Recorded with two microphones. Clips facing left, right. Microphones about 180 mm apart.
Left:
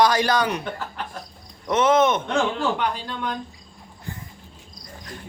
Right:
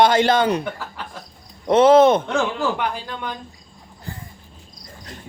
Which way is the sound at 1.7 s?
30° right (ahead or behind).